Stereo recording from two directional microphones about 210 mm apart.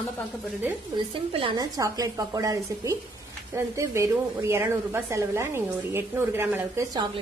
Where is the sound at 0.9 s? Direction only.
25° right (ahead or behind).